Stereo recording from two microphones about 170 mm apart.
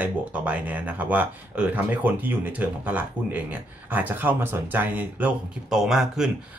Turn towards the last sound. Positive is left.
turn(degrees=-5)  # may be behind; listen again after turning